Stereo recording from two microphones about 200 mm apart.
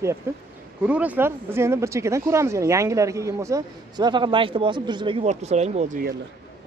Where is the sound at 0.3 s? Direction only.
10° right (ahead or behind); by 6.0 s 35° right (ahead or behind).